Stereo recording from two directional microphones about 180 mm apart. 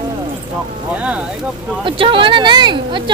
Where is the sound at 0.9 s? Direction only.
5° right (ahead or behind).